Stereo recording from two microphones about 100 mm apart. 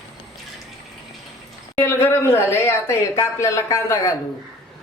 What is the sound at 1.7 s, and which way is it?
A woman's voice, 25° left (ahead or behind).